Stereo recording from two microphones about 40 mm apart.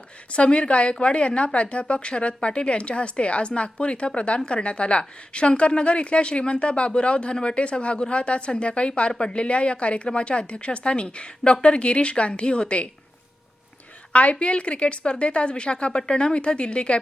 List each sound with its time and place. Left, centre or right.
0.3 s a woman's voice: left
14.1 s a woman's voice: left